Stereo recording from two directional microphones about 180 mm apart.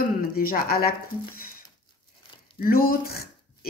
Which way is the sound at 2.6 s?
55° left (ahead or behind).